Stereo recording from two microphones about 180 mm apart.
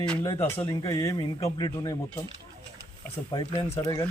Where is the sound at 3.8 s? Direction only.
20° left (ahead or behind).